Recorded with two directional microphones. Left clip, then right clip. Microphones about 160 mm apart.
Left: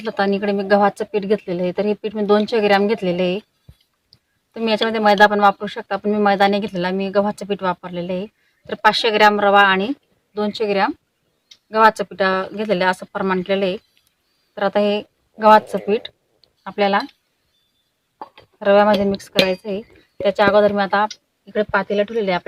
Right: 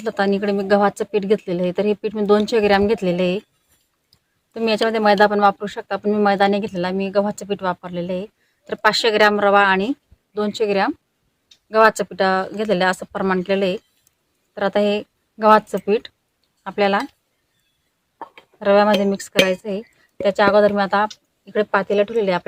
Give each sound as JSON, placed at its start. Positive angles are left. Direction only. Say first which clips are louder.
{"t": 0.0, "sound": "speech", "louder": "even", "side_deg": -20}
{"t": 4.5, "sound": "speech", "louder": "even", "side_deg": -25}
{"t": 10.3, "sound": "speech", "louder": "even", "side_deg": -30}
{"t": 18.3, "sound": "speech", "louder": "left 1 dB", "side_deg": -15}
{"t": 21.4, "sound": "speech", "louder": "even", "side_deg": -25}